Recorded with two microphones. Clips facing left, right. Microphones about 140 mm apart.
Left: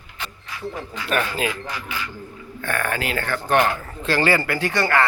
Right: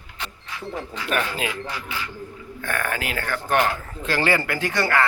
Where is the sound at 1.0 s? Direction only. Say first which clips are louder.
Left 3 dB; 15° right (ahead or behind).